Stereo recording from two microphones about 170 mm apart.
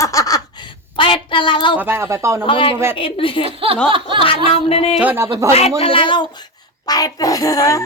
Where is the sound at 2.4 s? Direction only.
30° left (ahead or behind).